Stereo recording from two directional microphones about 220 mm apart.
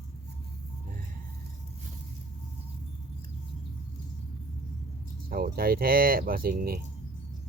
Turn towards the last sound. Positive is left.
turn(degrees=-45)  # may be behind; listen again after turning